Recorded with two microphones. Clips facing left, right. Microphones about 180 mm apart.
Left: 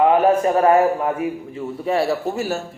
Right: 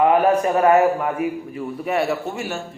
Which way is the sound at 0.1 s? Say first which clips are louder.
Left 1 dB; 30° left (ahead or behind).